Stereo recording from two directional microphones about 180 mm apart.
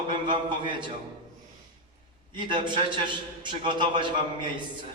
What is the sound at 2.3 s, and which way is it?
A man's voice, 25° right (ahead or behind).